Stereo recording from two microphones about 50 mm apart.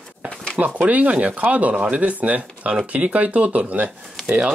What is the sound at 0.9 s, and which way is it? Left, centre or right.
Speech, right.